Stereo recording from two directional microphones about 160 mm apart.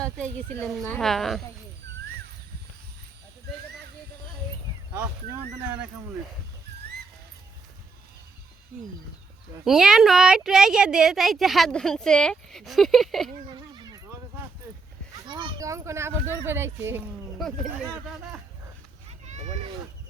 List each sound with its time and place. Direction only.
0.0 s speech: 5° left (ahead or behind)
4.9 s speech: 10° right (ahead or behind)
9.6 s speech: 5° right (ahead or behind)
13.5 s a sound: 25° right (ahead or behind)
15.1 s speech: 25° right (ahead or behind)
17.3 s speech: centre (ahead or behind)
19.2 s a sound: 45° right (ahead or behind)